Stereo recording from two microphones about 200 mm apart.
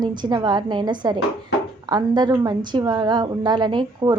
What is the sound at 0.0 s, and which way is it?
A woman's voice, 20° right (ahead or behind).